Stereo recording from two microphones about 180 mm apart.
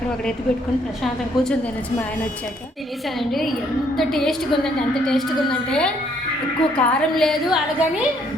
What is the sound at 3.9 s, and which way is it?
A woman's voice, centre (ahead or behind).